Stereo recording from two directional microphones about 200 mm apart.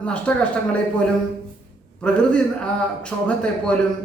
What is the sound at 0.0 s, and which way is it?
Speech, 5° left (ahead or behind).